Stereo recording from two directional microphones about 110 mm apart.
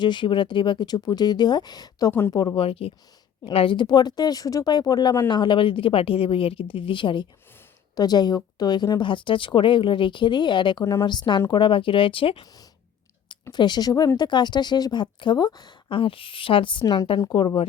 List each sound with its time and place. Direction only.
0.0 s speech: 45° left (ahead or behind)
2.0 s speech: 20° left (ahead or behind)
2.6 s speech: 60° left (ahead or behind)
7.9 s speech: 40° left (ahead or behind); by 12.5 s 55° left (ahead or behind)
13.5 s speech: 40° left (ahead or behind)